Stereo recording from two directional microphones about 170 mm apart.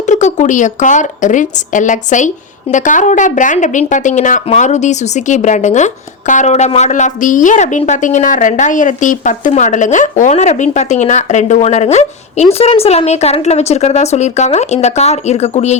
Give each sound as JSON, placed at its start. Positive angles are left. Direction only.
{"t": 0.0, "sound": "a woman's voice", "side_deg": 45}